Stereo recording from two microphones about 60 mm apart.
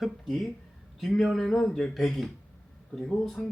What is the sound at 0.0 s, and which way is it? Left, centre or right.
Speech, centre.